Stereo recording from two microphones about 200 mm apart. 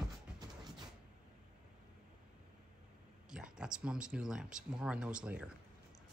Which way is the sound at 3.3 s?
5° right (ahead or behind).